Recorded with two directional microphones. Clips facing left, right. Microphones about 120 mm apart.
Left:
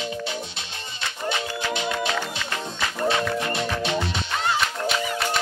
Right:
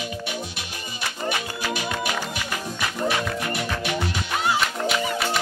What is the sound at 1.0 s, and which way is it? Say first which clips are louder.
Music: even; 25° left (ahead or behind).